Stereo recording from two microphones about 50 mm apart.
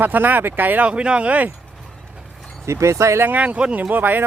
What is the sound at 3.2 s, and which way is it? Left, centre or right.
Speech, right.